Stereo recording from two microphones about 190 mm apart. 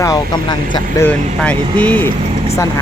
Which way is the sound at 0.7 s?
15° left (ahead or behind).